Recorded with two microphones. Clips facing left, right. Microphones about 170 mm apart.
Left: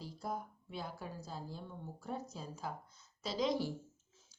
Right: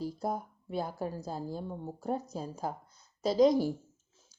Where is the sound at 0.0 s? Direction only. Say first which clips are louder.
Right 8 dB; 45° right (ahead or behind).